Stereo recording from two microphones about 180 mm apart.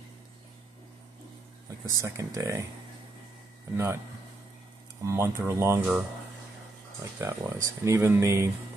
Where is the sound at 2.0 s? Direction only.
15° right (ahead or behind).